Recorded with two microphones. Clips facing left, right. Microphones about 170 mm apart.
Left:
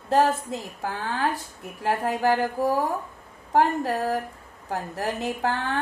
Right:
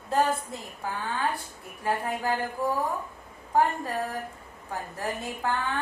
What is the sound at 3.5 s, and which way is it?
Speech, 90° left.